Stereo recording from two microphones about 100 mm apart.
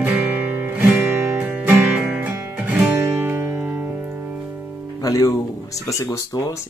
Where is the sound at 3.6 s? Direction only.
15° right (ahead or behind).